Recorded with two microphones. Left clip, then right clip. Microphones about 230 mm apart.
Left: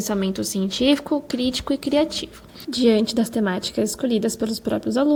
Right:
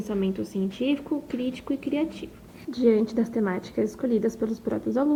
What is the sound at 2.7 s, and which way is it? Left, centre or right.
Speech, left.